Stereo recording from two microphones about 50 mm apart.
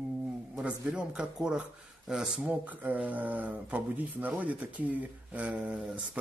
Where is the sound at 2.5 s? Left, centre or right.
Right.